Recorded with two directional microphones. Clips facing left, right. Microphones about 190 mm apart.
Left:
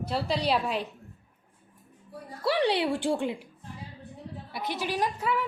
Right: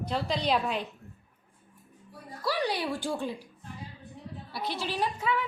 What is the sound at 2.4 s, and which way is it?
Speech, 30° left (ahead or behind).